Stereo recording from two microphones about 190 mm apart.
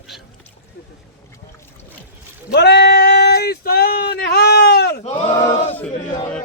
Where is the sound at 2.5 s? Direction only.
60° left (ahead or behind).